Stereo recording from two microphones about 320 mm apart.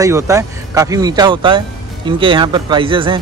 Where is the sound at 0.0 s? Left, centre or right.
Centre.